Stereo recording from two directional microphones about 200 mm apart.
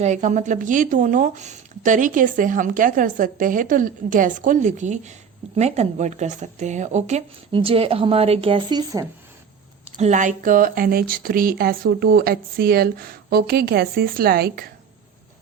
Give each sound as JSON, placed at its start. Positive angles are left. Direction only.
{"t": 0.0, "sound": "speech", "side_deg": -35}
{"t": 10.0, "sound": "speech", "side_deg": -40}